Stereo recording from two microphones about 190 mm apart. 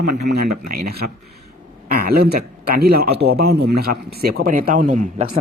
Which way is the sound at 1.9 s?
50° right (ahead or behind).